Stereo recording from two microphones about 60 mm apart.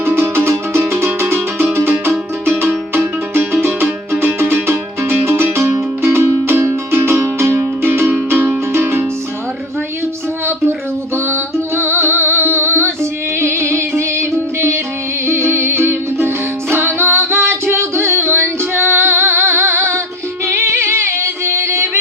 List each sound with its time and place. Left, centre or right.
0.0 s music: right
10.4 s music: right